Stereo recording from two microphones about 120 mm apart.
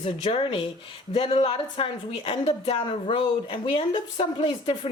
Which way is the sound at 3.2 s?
45° left (ahead or behind).